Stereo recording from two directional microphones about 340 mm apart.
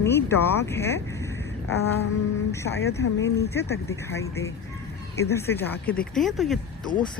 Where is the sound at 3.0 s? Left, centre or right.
Left.